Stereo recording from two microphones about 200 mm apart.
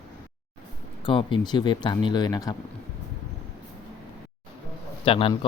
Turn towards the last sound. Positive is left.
turn(degrees=30)  # may be behind; listen again after turning